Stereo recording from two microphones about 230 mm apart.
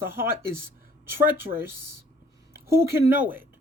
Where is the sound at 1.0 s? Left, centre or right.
Centre.